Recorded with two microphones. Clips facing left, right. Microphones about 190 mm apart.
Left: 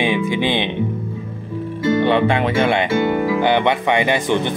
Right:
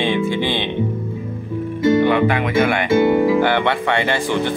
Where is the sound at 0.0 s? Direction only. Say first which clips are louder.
Even; 15° left (ahead or behind).